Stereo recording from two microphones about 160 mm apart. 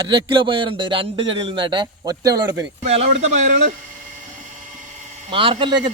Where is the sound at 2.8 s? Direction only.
45° right (ahead or behind).